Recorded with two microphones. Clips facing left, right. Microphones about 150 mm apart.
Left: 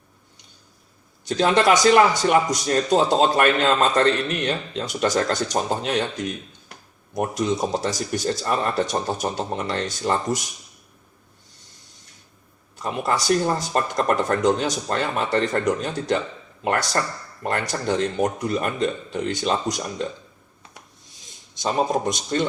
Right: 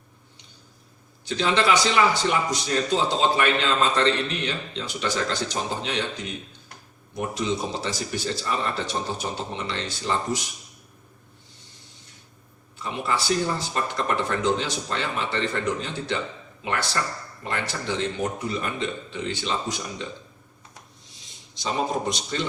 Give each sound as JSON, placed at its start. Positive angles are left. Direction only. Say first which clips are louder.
{"t": 1.3, "sound": "speech", "louder": "left 4 dB", "side_deg": 50}
{"t": 12.8, "sound": "speech", "louder": "left 3 dB", "side_deg": 45}
{"t": 17.4, "sound": "speech", "louder": "left 5 dB", "side_deg": 45}
{"t": 22.1, "sound": "speech", "louder": "left 5 dB", "side_deg": 50}